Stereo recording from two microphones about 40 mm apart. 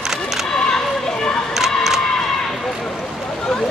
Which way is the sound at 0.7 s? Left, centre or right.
Left.